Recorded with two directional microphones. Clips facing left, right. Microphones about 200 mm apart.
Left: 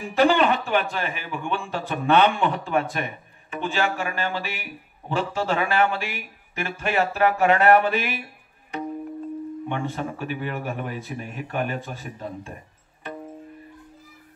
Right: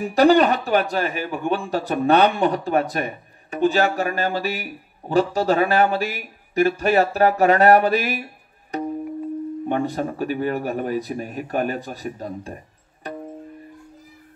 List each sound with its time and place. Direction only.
0.0 s speech: 40° right (ahead or behind)
9.7 s speech: 40° right (ahead or behind)